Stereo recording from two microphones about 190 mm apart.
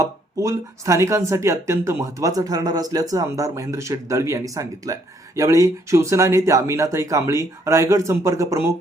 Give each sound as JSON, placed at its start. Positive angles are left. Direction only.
{"t": 0.0, "sound": "speech", "side_deg": -15}